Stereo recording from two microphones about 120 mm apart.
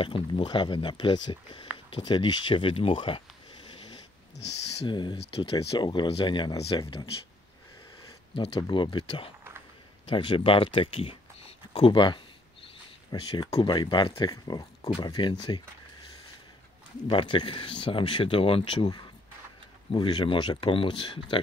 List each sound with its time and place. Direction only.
0.0 s speech: 45° left (ahead or behind)
3.6 s dog: 40° left (ahead or behind)
4.8 s speech: 40° left (ahead or behind)
5.1 s speech: 50° left (ahead or behind); by 7.1 s 35° left (ahead or behind)
8.4 s speech: 45° left (ahead or behind)
17.1 s speech: 45° left (ahead or behind)
19.9 s speech: 40° left (ahead or behind)